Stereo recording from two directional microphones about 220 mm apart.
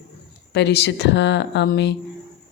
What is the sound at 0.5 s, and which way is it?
A woman's voice, 50° left (ahead or behind).